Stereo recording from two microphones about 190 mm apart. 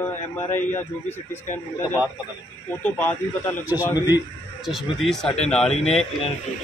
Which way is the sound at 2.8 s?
10° left (ahead or behind).